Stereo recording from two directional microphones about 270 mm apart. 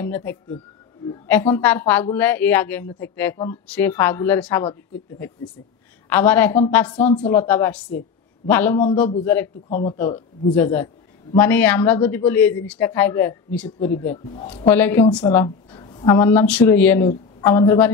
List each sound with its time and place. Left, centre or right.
0.0 s a woman's voice: centre
6.0 s a woman's voice: centre
9.7 s speech: left
10.5 s a woman's voice: centre
14.3 s speech: left
14.7 s a woman's voice: centre